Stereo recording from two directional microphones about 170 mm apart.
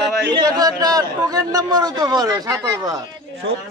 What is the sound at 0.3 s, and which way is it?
A man's voice, 20° right (ahead or behind).